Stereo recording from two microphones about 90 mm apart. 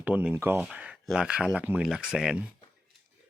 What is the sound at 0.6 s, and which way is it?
Speech, 10° right (ahead or behind).